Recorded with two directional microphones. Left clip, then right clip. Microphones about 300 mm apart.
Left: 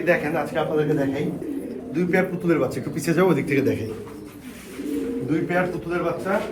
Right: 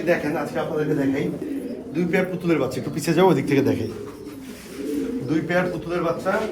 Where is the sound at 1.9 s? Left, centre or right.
Centre.